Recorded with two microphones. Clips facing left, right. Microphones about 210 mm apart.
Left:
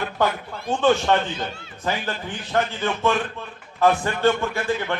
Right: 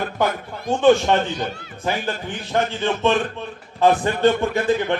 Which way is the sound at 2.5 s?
20° right (ahead or behind).